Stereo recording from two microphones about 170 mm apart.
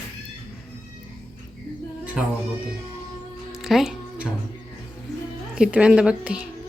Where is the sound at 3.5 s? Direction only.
Centre (ahead or behind).